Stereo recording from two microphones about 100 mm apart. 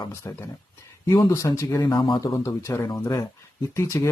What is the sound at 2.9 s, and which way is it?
Speech, 40° left (ahead or behind).